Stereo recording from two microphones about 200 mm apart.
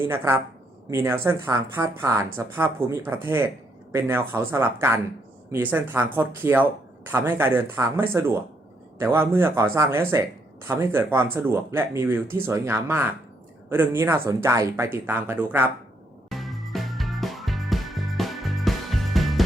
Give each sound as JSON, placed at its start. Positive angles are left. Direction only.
{"t": 0.0, "sound": "speech", "side_deg": -10}
{"t": 16.3, "sound": "music", "side_deg": 0}